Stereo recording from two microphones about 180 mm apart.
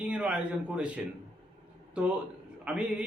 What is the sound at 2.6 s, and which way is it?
Speech, 5° right (ahead or behind).